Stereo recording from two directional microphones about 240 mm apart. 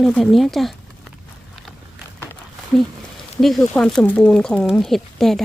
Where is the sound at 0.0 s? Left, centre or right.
Centre.